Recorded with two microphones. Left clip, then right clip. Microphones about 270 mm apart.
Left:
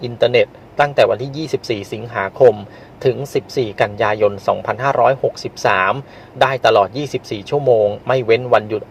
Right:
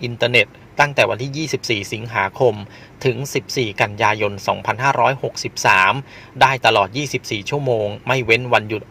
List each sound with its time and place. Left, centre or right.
0.8 s speech: right